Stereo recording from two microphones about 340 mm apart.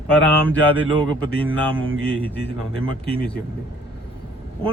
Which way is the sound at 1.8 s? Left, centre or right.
Right.